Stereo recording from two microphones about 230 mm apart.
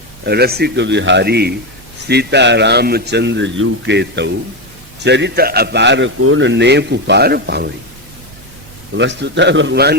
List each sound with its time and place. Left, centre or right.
0.3 s a man's voice: right
6.1 s a man's voice: right
9.0 s a man's voice: right